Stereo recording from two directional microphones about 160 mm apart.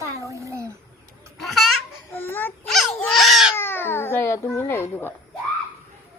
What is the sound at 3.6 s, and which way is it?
A child's voice, 15° left (ahead or behind).